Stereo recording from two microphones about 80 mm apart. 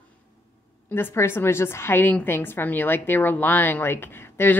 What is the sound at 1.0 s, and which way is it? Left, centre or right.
A woman's voice, left.